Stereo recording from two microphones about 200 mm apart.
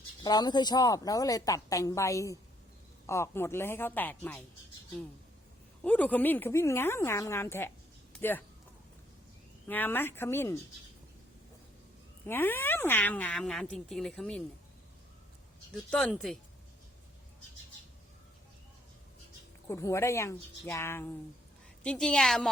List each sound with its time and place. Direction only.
0.2 s speech: 20° left (ahead or behind)
5.8 s speech: 5° left (ahead or behind)
9.6 s speech: 10° left (ahead or behind)
12.2 s speech: 10° left (ahead or behind)
15.7 s speech: 5° left (ahead or behind)
19.6 s speech: 15° left (ahead or behind)